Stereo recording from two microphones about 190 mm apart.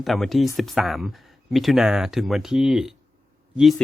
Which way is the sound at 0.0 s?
Centre (ahead or behind).